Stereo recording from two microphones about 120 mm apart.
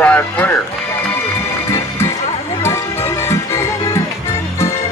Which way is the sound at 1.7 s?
20° left (ahead or behind).